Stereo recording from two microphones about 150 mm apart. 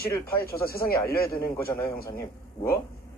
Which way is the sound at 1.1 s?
80° left.